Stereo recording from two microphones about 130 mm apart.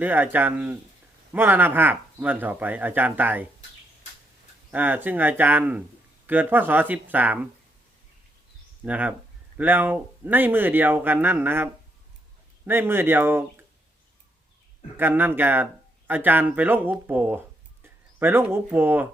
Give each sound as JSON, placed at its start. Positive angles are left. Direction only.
{"t": 0.0, "sound": "speech", "side_deg": -15}
{"t": 4.7, "sound": "speech", "side_deg": -15}
{"t": 8.8, "sound": "speech", "side_deg": -10}
{"t": 14.9, "sound": "speech", "side_deg": -15}